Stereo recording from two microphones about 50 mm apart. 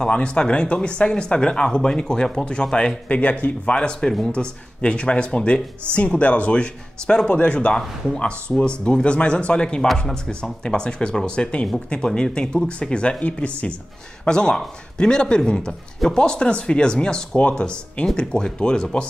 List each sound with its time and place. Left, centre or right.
0.0 s speech: left
3.1 s speech: left